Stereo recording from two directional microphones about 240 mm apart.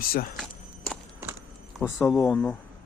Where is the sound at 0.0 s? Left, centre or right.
Left.